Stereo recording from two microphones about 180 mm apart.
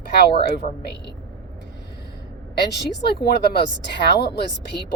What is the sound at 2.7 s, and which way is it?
A woman's voice, 60° left (ahead or behind).